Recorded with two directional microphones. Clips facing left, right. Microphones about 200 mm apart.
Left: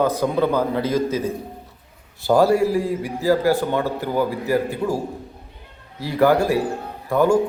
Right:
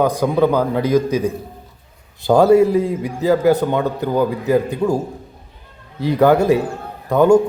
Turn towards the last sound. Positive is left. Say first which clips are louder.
# right 5 dB
turn(degrees=-20)  # may be behind; listen again after turning